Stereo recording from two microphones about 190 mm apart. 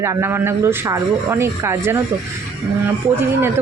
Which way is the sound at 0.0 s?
15° right (ahead or behind).